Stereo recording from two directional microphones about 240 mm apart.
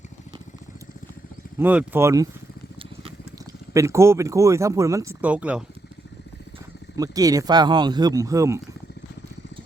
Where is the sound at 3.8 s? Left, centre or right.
Centre.